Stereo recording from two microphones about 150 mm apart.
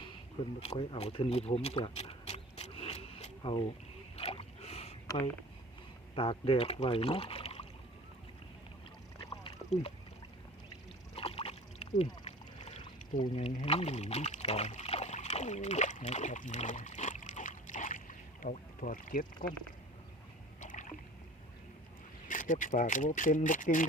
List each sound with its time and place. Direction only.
0.6 s a sound: 40° left (ahead or behind)
4.2 s boat: 40° left (ahead or behind)
6.1 s speech: 35° left (ahead or behind)
9.1 s a sound: 35° left (ahead or behind)
11.1 s rowboat: 40° left (ahead or behind)
13.6 s speech: 40° left (ahead or behind); by 19.5 s 65° left (ahead or behind)
20.6 s rowboat: 55° left (ahead or behind)
22.3 s speech: 60° left (ahead or behind)